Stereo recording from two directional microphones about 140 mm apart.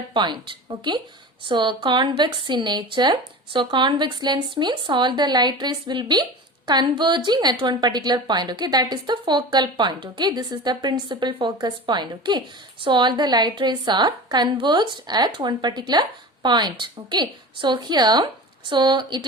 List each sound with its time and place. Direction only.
0.1 s a woman's voice: 35° right (ahead or behind)